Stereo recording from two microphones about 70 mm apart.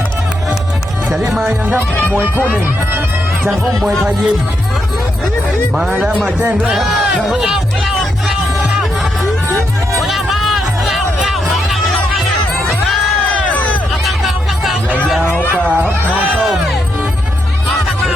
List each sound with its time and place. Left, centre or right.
1.1 s speech: centre
3.4 s speech: centre
6.4 s speech: right
6.7 s speech: centre
10.0 s music: centre
13.3 s a sound: left
14.3 s music: centre
15.4 s speech: left